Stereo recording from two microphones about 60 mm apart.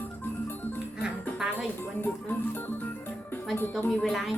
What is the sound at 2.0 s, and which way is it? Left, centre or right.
Speech, left.